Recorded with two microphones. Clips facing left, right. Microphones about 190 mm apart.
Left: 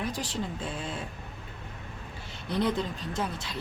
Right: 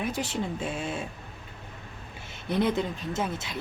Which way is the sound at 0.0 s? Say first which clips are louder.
Right 3 dB; 25° right (ahead or behind).